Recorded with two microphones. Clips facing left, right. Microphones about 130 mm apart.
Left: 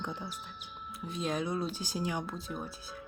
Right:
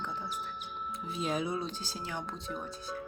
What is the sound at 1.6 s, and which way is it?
Speech, 15° left (ahead or behind).